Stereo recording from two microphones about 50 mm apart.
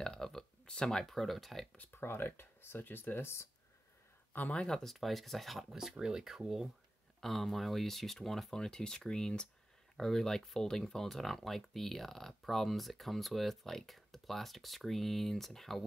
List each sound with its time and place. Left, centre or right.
0.0 s speech: centre
1.8 s speech: left
4.3 s speech: left
4.6 s speech: centre